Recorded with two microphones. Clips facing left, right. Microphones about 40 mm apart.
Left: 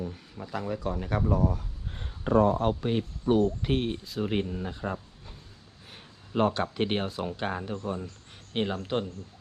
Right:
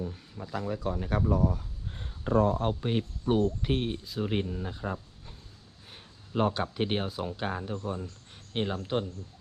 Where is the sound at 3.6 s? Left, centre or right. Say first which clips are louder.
Left 2 dB; left.